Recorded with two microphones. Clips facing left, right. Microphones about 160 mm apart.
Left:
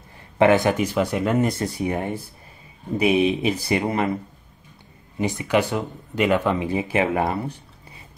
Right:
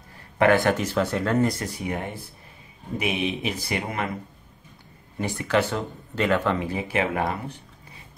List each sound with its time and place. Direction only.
0.4 s speech: 15° left (ahead or behind)
1.6 s speech: 25° left (ahead or behind)
5.2 s speech: 15° left (ahead or behind)